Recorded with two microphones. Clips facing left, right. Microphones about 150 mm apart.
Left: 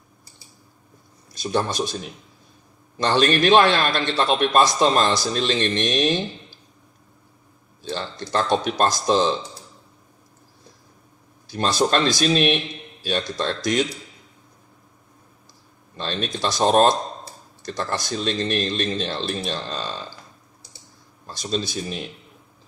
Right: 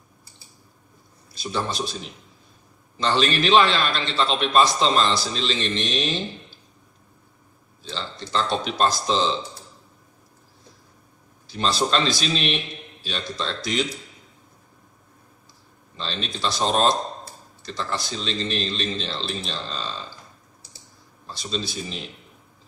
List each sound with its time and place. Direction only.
1.4 s a man's voice: 45° left (ahead or behind)
3.0 s a man's voice: 55° left (ahead or behind)
7.9 s speech: 55° left (ahead or behind)
11.5 s a man's voice: 55° left (ahead or behind)
16.0 s a man's voice: 55° left (ahead or behind)
21.4 s speech: 55° left (ahead or behind)